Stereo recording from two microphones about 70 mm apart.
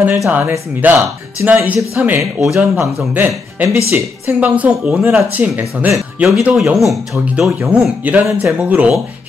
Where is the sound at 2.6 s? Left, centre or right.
Right.